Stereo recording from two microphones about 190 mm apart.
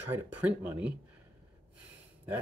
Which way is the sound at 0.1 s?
10° right (ahead or behind).